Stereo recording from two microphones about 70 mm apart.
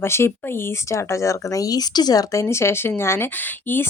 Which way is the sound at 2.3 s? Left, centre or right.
Left.